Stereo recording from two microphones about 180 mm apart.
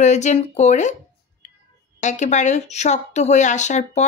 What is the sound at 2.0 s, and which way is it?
Speech, 40° left (ahead or behind).